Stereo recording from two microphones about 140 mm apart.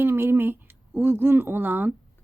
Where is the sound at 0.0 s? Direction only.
15° right (ahead or behind).